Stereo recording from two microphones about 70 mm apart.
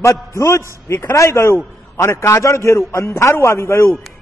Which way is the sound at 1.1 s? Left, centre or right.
Left.